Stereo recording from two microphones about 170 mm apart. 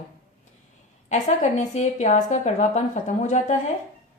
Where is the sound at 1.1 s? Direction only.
45° left (ahead or behind).